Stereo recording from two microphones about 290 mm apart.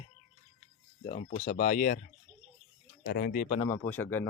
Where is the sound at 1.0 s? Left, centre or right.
Left.